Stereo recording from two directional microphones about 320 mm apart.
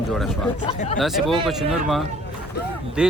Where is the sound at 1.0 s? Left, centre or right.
Centre.